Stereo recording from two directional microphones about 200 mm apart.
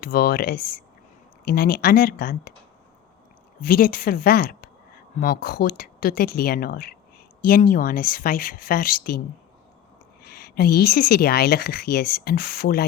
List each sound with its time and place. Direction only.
0.0 s speech: 50° left (ahead or behind)
3.6 s speech: 45° left (ahead or behind)
10.2 s speech: 50° left (ahead or behind)